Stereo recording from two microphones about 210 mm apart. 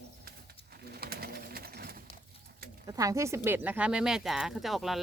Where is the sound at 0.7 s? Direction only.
50° right (ahead or behind).